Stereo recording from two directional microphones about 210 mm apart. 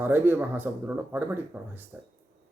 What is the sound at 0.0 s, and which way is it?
Speech, 10° right (ahead or behind).